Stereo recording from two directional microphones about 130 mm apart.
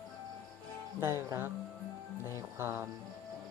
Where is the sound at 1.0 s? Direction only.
20° right (ahead or behind).